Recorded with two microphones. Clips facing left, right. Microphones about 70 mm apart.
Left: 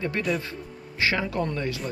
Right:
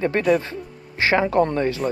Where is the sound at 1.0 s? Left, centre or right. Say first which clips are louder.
Right 8 dB; right.